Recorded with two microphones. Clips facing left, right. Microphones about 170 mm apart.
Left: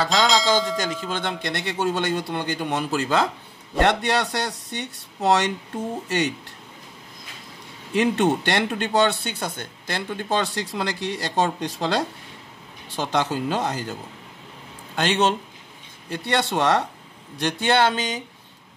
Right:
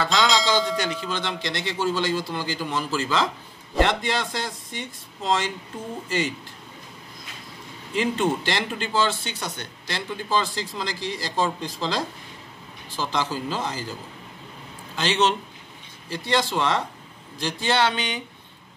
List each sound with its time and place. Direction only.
0.0 s a sound: 40° left (ahead or behind)
0.7 s speech: 45° left (ahead or behind); by 6.3 s 70° left (ahead or behind)
7.9 s speech: 70° left (ahead or behind)
15.0 s speech: 55° left (ahead or behind)
16.3 s speech: 65° left (ahead or behind); by 18.2 s 45° left (ahead or behind)